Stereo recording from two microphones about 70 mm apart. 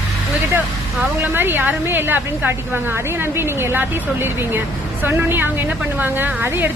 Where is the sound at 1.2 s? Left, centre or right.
Right.